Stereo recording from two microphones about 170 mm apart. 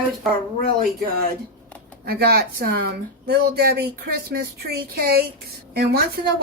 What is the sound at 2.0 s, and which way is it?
Speech, 65° right (ahead or behind).